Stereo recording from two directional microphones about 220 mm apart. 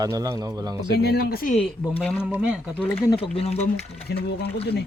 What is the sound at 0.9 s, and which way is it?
Speech, 50° left (ahead or behind).